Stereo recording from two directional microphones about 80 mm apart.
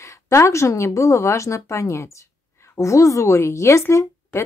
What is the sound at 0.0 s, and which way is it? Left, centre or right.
Speech, left.